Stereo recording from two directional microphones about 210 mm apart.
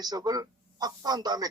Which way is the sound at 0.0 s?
20° right (ahead or behind).